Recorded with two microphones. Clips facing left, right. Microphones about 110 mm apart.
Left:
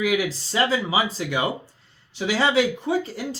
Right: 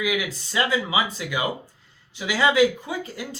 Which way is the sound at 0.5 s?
30° left (ahead or behind).